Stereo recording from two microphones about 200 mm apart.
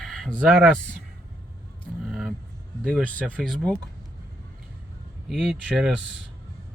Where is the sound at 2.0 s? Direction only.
Centre (ahead or behind).